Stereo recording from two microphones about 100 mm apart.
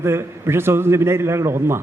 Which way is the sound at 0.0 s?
25° right (ahead or behind).